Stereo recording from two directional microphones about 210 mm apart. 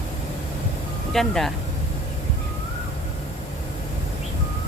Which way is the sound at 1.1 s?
Centre (ahead or behind).